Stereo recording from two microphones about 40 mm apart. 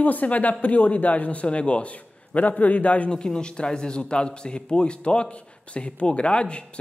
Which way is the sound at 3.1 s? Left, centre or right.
Left.